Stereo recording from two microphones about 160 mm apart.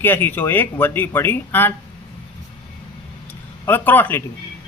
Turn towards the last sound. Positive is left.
turn(degrees=10)  # may be behind; listen again after turning